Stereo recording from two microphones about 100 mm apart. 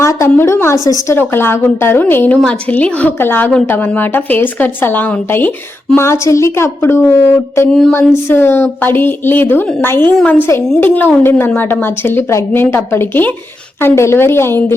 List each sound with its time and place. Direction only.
0.0 s a woman's voice: 30° left (ahead or behind)
1.1 s a woman's voice: 20° left (ahead or behind)
6.1 s a woman's voice: 30° left (ahead or behind)
7.7 s a woman's voice: 5° left (ahead or behind)
7.9 s a woman's voice: 25° left (ahead or behind)